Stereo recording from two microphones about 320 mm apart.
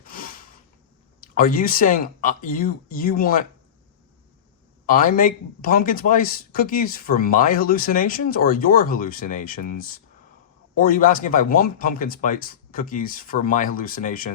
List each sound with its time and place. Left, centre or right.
0.0 s a sound: left
1.2 s speech: left
4.9 s speech: left